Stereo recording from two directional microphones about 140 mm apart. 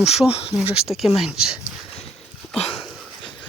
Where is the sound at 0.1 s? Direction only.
45° left (ahead or behind).